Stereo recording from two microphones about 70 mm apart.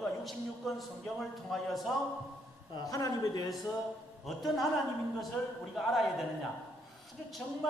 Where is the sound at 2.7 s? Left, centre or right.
Left.